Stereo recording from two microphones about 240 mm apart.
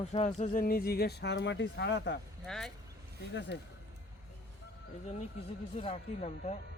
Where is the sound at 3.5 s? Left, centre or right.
Left.